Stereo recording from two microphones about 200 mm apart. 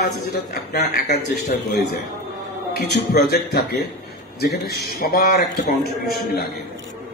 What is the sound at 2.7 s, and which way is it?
A man's voice, 55° left (ahead or behind).